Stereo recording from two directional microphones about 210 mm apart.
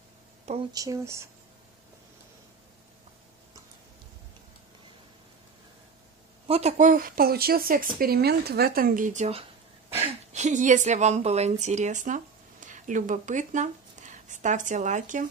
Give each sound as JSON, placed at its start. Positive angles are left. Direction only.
{"t": 0.7, "sound": "speech", "side_deg": -15}
{"t": 6.4, "sound": "a woman's voice", "side_deg": -30}